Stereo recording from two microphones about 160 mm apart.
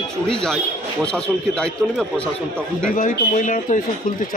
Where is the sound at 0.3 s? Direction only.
5° left (ahead or behind).